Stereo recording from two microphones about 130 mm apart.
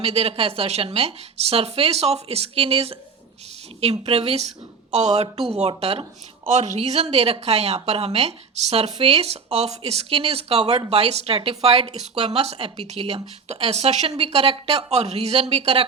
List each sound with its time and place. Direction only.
0.0 s speech: 50° right (ahead or behind)
4.0 s speech: 55° right (ahead or behind)
6.5 s speech: 65° right (ahead or behind)